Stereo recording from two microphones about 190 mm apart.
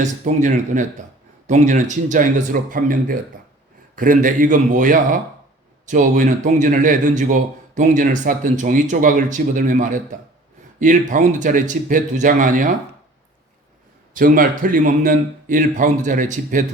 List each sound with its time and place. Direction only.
0.0 s a man's voice: 40° right (ahead or behind)
14.1 s a man's voice: 45° right (ahead or behind)